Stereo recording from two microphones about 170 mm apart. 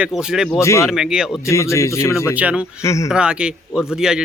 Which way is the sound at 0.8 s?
Centre (ahead or behind).